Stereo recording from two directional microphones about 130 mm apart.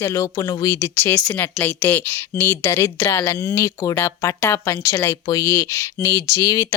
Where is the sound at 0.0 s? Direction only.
25° left (ahead or behind).